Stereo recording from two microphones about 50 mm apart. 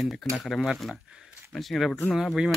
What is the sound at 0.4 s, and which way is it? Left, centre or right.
Speech, centre.